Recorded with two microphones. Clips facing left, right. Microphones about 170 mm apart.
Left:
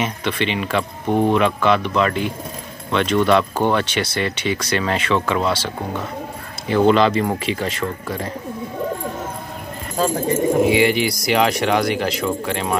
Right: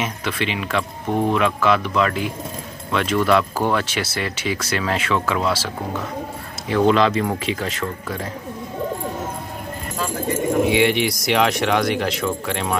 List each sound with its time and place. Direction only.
0.0 s speech: 5° right (ahead or behind)
9.9 s speech: 35° left (ahead or behind)
10.6 s speech: centre (ahead or behind)